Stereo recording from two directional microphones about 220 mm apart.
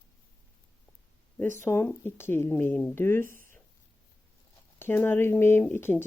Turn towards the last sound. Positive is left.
turn(degrees=10)  # may be behind; listen again after turning